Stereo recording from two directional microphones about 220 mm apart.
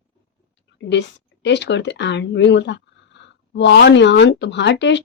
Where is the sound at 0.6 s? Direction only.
55° left (ahead or behind).